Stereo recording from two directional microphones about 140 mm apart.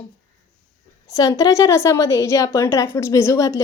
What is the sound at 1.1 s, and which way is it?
A woman's voice, 25° left (ahead or behind).